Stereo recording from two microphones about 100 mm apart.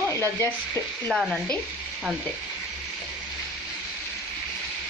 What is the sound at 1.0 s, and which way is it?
Speech, 5° left (ahead or behind).